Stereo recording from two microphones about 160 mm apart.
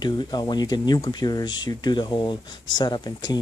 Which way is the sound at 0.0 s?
25° left (ahead or behind).